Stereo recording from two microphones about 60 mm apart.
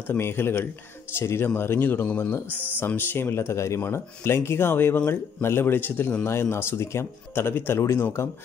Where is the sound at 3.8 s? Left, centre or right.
Left.